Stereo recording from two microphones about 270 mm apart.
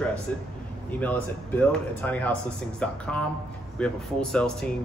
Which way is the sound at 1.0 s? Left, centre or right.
Centre.